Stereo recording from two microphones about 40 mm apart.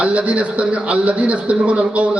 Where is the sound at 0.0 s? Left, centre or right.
Right.